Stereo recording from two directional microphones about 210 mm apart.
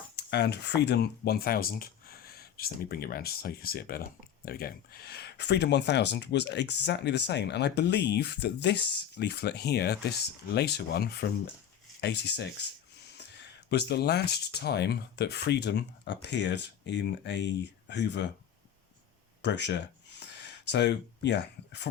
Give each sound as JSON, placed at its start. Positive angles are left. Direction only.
{"t": 0.2, "sound": "speech", "side_deg": 55}
{"t": 19.4, "sound": "speech", "side_deg": 55}